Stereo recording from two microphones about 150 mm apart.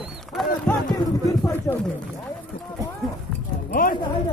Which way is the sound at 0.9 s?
25° left (ahead or behind).